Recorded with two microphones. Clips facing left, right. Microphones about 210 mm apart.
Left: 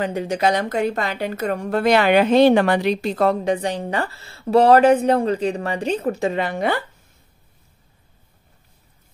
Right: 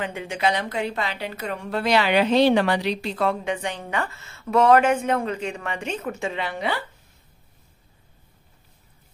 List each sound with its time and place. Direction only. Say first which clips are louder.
0.0 s a woman's voice: left 5 dB; 40° left (ahead or behind)